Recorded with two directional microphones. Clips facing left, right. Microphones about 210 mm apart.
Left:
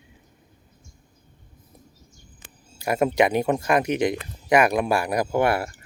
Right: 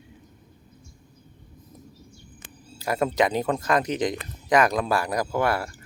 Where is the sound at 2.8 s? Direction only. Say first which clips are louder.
Left 3 dB; 15° left (ahead or behind).